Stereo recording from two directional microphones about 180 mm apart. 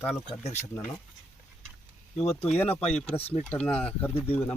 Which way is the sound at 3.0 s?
35° left (ahead or behind).